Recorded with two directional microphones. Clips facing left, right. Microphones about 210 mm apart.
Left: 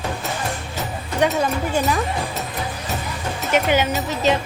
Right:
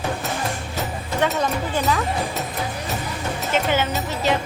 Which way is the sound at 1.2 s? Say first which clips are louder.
Left 3 dB; 15° left (ahead or behind).